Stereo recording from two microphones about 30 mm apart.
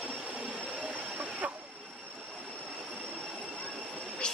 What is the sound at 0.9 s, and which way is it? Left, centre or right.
Train, right.